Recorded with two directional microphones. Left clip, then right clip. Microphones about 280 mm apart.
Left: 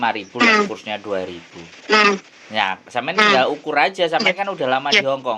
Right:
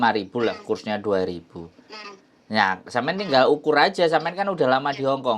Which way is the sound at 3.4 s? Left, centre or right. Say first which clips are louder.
Even; right.